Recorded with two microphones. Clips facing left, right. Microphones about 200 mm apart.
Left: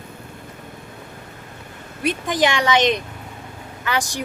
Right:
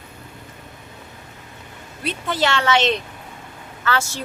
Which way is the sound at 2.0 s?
15° left (ahead or behind).